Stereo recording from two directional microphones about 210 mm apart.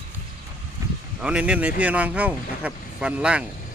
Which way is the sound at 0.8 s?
15° right (ahead or behind).